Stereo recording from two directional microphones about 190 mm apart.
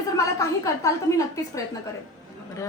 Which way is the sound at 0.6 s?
15° left (ahead or behind).